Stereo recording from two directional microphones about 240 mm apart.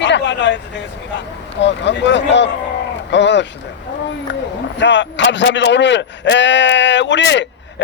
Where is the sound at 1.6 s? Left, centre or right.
Left.